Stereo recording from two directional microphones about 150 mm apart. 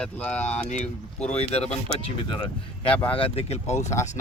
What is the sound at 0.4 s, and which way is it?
Speech, 45° left (ahead or behind).